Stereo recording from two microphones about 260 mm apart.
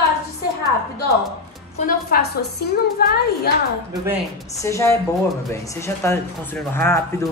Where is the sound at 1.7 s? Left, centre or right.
Left.